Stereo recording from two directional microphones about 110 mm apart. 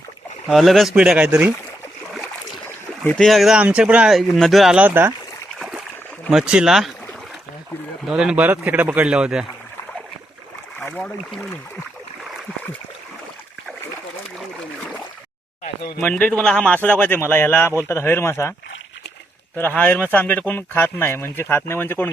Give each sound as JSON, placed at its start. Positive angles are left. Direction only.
{"t": 0.4, "sound": "speech", "side_deg": 0}
{"t": 2.2, "sound": "boat", "side_deg": 15}
{"t": 3.2, "sound": "speech", "side_deg": 0}
{"t": 4.4, "sound": "speech", "side_deg": 0}
{"t": 4.8, "sound": "speech", "side_deg": -20}
{"t": 5.5, "sound": "splash", "side_deg": -10}
{"t": 6.3, "sound": "speech", "side_deg": -10}
{"t": 8.1, "sound": "speech", "side_deg": -10}
{"t": 10.8, "sound": "boat", "side_deg": 15}
{"t": 16.0, "sound": "speech", "side_deg": 15}
{"t": 19.5, "sound": "speech", "side_deg": 15}